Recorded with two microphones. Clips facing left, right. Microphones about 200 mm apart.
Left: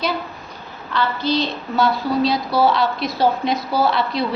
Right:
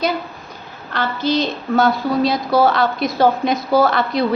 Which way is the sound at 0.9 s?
45° right (ahead or behind).